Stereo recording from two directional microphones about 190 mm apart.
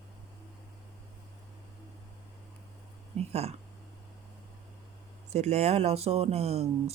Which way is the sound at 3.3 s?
35° right (ahead or behind).